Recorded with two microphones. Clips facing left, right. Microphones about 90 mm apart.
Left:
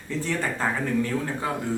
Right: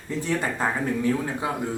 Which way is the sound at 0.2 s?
15° right (ahead or behind).